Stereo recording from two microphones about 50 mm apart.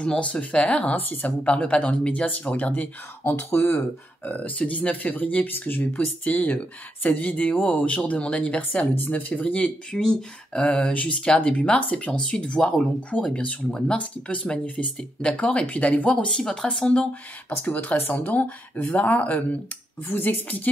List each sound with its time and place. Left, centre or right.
0.0 s speech: left
0.9 s speech: left
1.4 s speech: left
3.3 s speech: left
4.2 s speech: left
8.9 s speech: left; by 12.8 s centre
13.4 s speech: left
13.7 s speech: centre
16.3 s speech: centre
17.6 s speech: left
20.1 s speech: left